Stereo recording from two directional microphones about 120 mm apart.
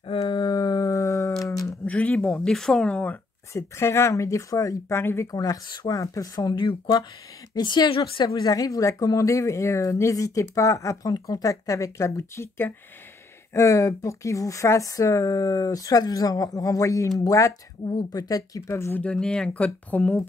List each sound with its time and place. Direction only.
0.0 s a sound: 50° left (ahead or behind); by 1.8 s 30° left (ahead or behind)
1.9 s speech: 10° left (ahead or behind)
3.5 s speech: 20° left (ahead or behind)